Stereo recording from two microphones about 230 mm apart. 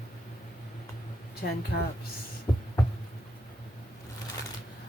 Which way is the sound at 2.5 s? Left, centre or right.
Centre.